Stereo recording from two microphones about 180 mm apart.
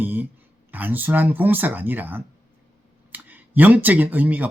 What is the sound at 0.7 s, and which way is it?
Speech, 10° right (ahead or behind).